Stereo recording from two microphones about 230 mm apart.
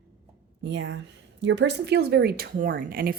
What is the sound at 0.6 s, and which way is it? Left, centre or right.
Speech, right.